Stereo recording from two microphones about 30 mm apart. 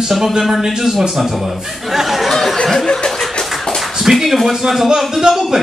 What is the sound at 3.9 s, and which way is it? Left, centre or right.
Speech, centre.